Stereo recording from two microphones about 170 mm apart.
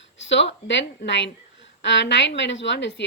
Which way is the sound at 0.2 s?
90° left.